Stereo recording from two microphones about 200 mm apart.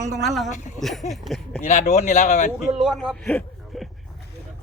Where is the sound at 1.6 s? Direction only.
35° left (ahead or behind).